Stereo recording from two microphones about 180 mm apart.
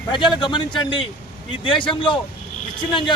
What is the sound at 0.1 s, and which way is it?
Speech, 25° left (ahead or behind).